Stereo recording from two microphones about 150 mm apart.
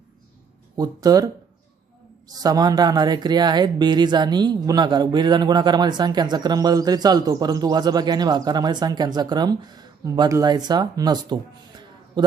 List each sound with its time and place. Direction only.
0.8 s speech: 25° right (ahead or behind)